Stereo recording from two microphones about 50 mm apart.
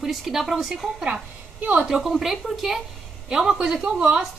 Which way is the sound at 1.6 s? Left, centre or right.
Right.